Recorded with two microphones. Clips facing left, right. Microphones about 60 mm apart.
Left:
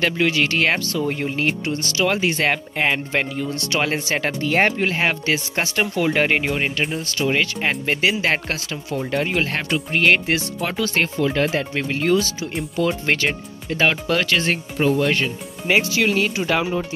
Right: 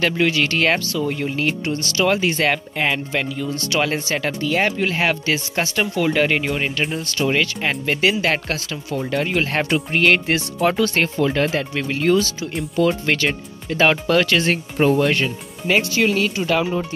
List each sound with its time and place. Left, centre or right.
0.0 s speech: centre
0.9 s speech: left
2.0 s speech: centre
2.4 s speech: centre
3.1 s speech: left
3.8 s speech: centre
4.2 s speech: left
4.9 s speech: centre
6.8 s speech: centre
7.6 s speech: centre
13.0 s speech: centre
13.3 s speech: centre
15.6 s speech: centre